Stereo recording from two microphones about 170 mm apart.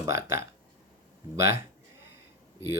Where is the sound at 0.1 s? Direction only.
15° right (ahead or behind).